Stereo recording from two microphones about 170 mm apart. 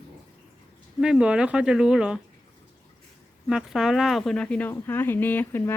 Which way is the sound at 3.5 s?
5° right (ahead or behind).